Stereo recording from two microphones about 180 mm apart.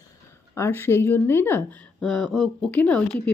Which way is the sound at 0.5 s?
10° left (ahead or behind).